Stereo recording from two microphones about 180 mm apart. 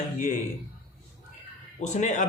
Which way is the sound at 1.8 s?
40° left (ahead or behind).